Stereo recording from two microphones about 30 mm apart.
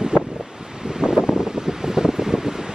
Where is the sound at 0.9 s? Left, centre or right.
Right.